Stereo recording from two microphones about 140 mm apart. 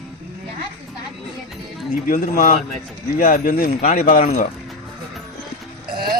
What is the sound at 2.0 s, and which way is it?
Speech, 80° left.